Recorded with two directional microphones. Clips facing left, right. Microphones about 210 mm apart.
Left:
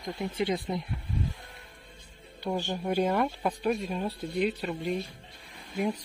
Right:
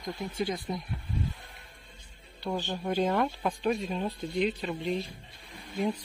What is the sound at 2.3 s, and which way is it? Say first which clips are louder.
Speech: left 2 dB; 15° left (ahead or behind).